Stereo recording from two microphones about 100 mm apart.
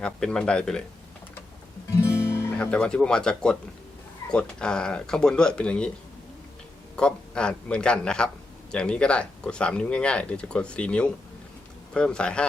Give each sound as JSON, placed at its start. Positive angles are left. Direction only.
{"t": 0.0, "sound": "speech", "side_deg": 10}
{"t": 2.0, "sound": "music", "side_deg": 25}
{"t": 2.6, "sound": "speech", "side_deg": 10}
{"t": 6.9, "sound": "speech", "side_deg": 10}